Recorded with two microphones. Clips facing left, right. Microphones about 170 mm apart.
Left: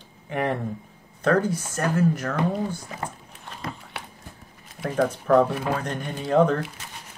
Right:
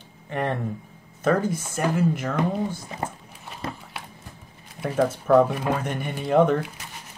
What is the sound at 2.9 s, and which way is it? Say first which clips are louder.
Speech: right 2 dB; 25° right (ahead or behind).